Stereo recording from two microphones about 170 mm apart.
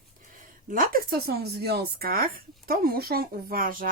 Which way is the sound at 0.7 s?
60° right (ahead or behind).